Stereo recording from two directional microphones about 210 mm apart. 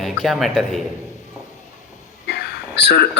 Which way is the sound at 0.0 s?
Centre (ahead or behind).